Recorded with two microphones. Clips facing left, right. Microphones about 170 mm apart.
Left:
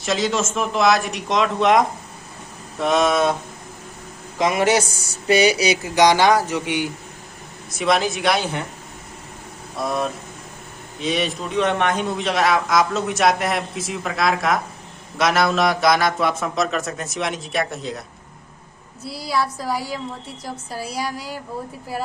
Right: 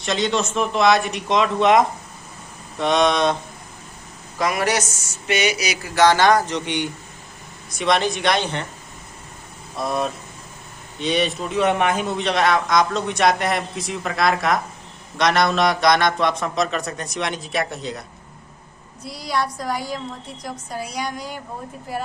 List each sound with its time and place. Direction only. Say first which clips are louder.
0.0 s a man's voice: even; centre (ahead or behind)
4.4 s a man's voice: left 3 dB; 25° left (ahead or behind); by 8.6 s 5° left (ahead or behind)
9.7 s a man's voice: even; centre (ahead or behind)
19.0 s a man's voice: left 1 dB; 5° left (ahead or behind)